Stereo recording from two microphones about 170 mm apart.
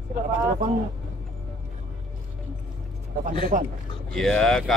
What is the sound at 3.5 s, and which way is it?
Speech, 50° right (ahead or behind).